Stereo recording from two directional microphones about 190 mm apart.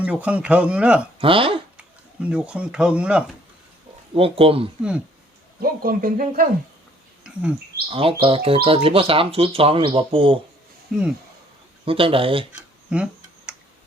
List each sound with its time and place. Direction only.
0.0 s speech: 5° right (ahead or behind)
1.2 s speech: 30° right (ahead or behind)
2.2 s speech: 5° right (ahead or behind)
4.1 s speech: 30° right (ahead or behind)
4.8 s speech: 5° right (ahead or behind)
5.6 s speech: 50° right (ahead or behind)
7.9 s speech: 30° right (ahead or behind)
10.9 s speech: 5° right (ahead or behind)
11.9 s speech: 30° right (ahead or behind)
12.5 s a sound: 5° right (ahead or behind)